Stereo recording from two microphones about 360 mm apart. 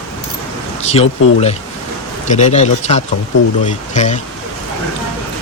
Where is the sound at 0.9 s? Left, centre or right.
Centre.